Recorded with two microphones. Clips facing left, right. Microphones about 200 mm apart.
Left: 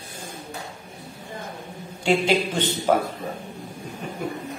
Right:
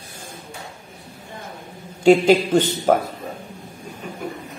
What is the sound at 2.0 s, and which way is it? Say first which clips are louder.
Mantra: right 7 dB; 45° right (ahead or behind).